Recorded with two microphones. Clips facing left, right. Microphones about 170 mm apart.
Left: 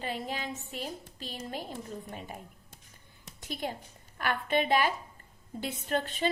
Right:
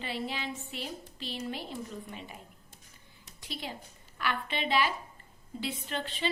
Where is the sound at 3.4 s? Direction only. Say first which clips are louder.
Left 4 dB; 50° left (ahead or behind).